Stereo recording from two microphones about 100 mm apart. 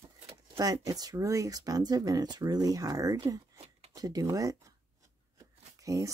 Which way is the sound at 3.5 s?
90° right.